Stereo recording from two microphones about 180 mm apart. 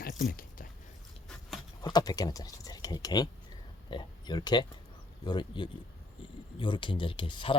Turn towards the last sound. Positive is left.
turn(degrees=30)  # may be behind; listen again after turning